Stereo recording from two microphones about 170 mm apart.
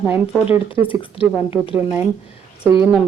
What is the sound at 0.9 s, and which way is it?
Speech, 30° left (ahead or behind).